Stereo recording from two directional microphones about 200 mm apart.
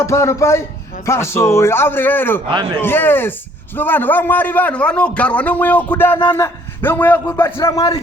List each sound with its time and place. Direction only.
0.0 s a man's voice: 15° left (ahead or behind)